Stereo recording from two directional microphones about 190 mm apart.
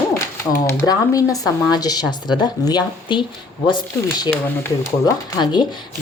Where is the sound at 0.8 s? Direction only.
20° left (ahead or behind).